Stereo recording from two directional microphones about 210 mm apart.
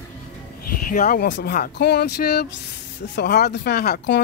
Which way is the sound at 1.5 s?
50° left (ahead or behind).